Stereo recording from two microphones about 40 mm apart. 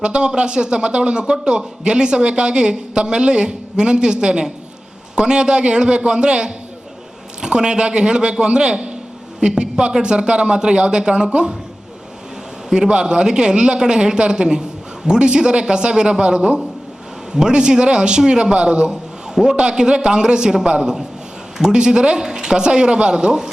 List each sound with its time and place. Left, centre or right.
0.0 s a man's voice: right
12.9 s a man's voice: right